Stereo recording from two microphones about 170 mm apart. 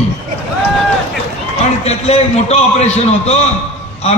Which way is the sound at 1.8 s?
40° left (ahead or behind).